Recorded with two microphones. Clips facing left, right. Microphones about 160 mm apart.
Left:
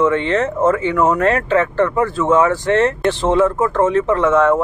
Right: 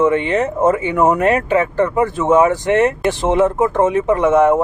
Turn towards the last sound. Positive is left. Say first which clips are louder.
# right 1 dB
turn(degrees=-15)  # may be behind; listen again after turning